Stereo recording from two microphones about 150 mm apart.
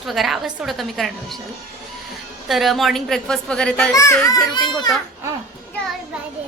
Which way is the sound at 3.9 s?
20° left (ahead or behind).